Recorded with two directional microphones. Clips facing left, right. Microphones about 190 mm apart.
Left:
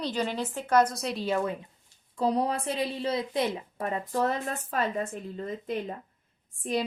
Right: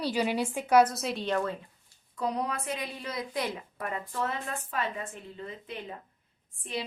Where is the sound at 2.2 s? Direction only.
30° left (ahead or behind).